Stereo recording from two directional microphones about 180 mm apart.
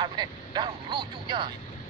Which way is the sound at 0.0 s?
25° right (ahead or behind).